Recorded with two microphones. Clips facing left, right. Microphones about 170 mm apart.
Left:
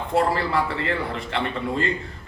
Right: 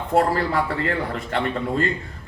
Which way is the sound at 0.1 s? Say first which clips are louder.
Right 2 dB; 45° right (ahead or behind).